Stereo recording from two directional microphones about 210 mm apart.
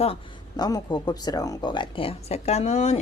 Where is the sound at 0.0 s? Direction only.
25° left (ahead or behind).